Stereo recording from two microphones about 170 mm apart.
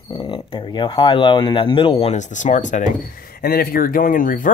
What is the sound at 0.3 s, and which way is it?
Speech, 30° left (ahead or behind).